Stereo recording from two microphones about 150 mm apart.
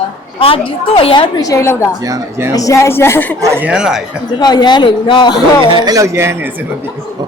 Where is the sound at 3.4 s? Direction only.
15° right (ahead or behind).